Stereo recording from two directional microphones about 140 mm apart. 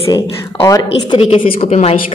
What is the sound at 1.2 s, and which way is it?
Speech, 45° left (ahead or behind).